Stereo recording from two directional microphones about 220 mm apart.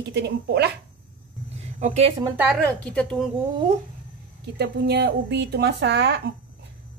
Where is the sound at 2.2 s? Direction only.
5° right (ahead or behind).